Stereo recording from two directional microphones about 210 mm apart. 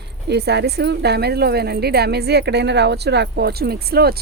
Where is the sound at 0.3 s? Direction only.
50° right (ahead or behind).